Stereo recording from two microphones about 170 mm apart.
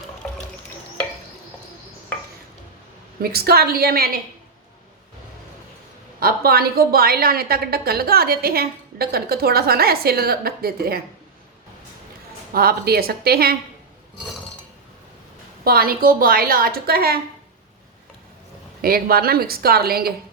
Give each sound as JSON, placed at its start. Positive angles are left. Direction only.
{"t": 3.2, "sound": "a woman's voice", "side_deg": -65}
{"t": 6.1, "sound": "a woman's voice", "side_deg": -65}
{"t": 12.5, "sound": "a woman's voice", "side_deg": -65}
{"t": 15.6, "sound": "a woman's voice", "side_deg": -60}
{"t": 18.8, "sound": "a woman's voice", "side_deg": -60}